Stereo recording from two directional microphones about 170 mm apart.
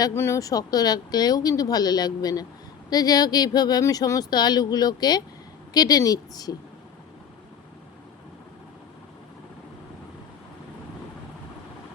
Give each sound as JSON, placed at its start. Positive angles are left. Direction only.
{"t": 0.0, "sound": "speech", "side_deg": 15}